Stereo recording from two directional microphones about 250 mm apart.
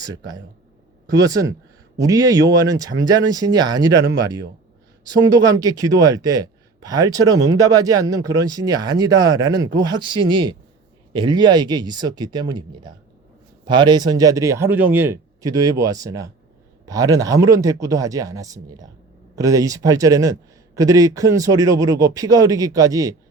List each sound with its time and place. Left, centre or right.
0.0 s a man's voice: centre